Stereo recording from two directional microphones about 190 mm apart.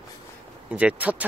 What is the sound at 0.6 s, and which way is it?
Speech, 5° right (ahead or behind).